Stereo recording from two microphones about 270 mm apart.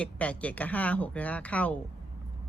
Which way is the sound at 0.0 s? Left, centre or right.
Centre.